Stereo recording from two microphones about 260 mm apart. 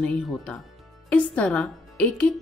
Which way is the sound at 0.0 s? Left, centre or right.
Centre.